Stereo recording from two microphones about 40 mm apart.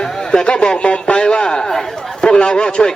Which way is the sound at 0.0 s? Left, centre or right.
Centre.